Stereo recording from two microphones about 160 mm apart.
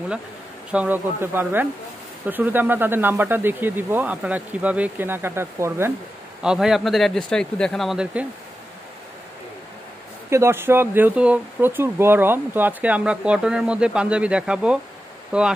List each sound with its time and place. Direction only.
0.7 s speech: 10° right (ahead or behind)
6.4 s speech: 5° right (ahead or behind)
10.3 s speech: 15° right (ahead or behind)